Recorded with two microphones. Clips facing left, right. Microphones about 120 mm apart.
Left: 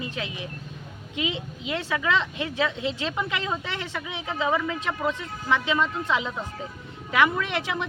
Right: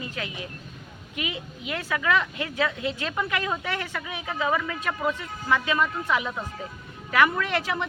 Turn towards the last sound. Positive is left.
turn(degrees=20)  # may be behind; listen again after turning